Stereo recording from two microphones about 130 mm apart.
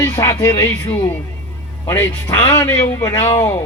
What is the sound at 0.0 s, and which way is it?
Speech, 25° left (ahead or behind).